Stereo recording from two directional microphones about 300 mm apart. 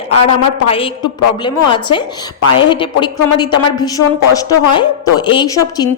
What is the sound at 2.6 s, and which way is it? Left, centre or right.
A woman's voice, centre.